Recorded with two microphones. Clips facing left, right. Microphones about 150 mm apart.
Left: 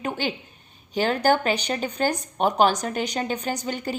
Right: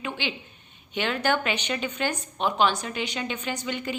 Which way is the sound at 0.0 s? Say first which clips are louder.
Left 4 dB; 45° left (ahead or behind).